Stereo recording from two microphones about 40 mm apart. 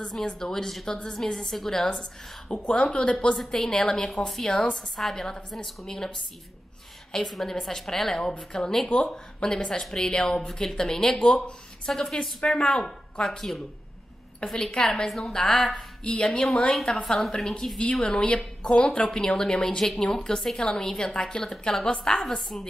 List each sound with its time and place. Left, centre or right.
0.0 s a woman's voice: centre
3.3 s a woman's voice: centre
7.2 s a woman's voice: centre
11.1 s speech: left
12.5 s a woman's voice: left
16.3 s speech: centre
16.9 s a woman's voice: left